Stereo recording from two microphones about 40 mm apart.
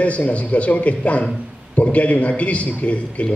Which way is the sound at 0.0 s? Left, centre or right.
Left.